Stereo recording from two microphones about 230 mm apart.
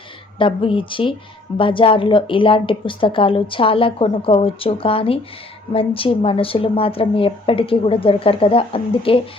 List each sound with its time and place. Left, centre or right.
0.3 s a woman's voice: left